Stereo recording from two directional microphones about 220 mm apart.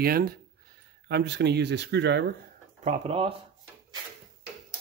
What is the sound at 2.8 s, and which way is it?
Speech, 25° right (ahead or behind).